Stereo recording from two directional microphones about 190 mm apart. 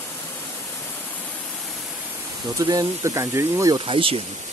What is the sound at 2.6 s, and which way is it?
Speech, 20° right (ahead or behind).